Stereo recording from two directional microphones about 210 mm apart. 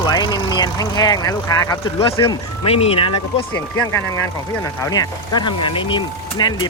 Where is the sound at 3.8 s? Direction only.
15° left (ahead or behind).